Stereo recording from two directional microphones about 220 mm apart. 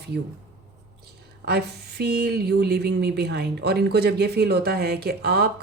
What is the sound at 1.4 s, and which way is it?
Speech, 45° right (ahead or behind).